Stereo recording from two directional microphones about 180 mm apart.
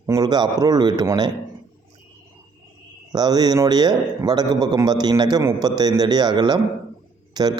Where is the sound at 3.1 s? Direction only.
20° right (ahead or behind).